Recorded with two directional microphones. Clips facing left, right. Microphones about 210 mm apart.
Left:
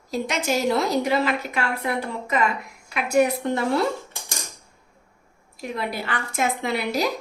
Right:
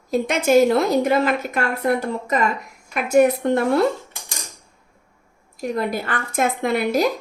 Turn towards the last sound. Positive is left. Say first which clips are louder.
# right 5 dB
turn(degrees=-50)  # may be behind; listen again after turning